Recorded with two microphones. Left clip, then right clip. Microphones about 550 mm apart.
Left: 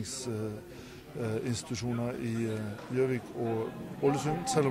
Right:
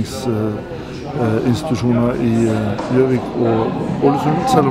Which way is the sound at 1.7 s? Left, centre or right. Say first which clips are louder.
Right 17 dB; left.